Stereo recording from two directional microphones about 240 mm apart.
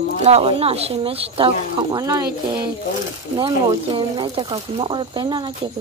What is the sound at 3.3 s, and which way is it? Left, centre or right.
Speech, right.